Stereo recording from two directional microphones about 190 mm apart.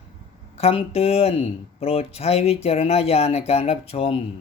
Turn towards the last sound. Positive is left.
turn(degrees=30)  # may be behind; listen again after turning